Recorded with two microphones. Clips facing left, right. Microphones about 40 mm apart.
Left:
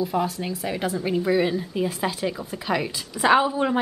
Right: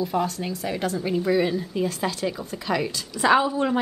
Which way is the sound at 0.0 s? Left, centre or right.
Centre.